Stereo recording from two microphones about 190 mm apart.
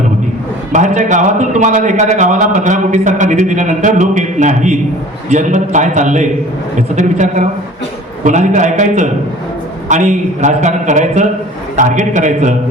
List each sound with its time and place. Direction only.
0.7 s speech: 40° right (ahead or behind)